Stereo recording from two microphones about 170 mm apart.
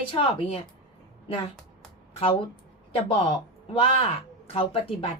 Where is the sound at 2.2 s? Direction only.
30° left (ahead or behind).